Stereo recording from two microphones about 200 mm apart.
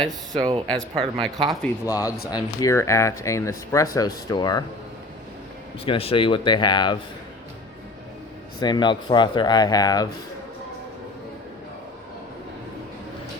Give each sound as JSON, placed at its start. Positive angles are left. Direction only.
{"t": 0.0, "sound": "speech", "side_deg": -20}
{"t": 1.4, "sound": "speech", "side_deg": 0}
{"t": 1.8, "sound": "speech", "side_deg": 15}
{"t": 5.8, "sound": "speech", "side_deg": 30}
{"t": 8.6, "sound": "speech", "side_deg": 20}